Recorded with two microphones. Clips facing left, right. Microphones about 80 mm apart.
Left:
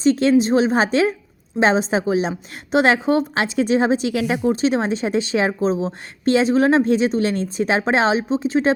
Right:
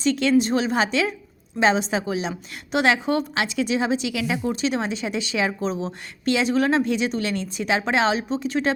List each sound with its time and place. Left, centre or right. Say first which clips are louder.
0.0 s a woman's voice: left 4 dB; left